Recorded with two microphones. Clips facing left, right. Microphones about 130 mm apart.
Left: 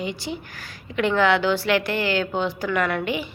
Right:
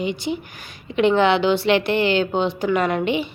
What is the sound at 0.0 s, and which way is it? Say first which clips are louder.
A woman's voice: right 5 dB; 20° right (ahead or behind).